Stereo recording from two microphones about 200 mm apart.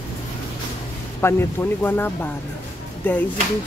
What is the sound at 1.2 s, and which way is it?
Speech, 15° left (ahead or behind).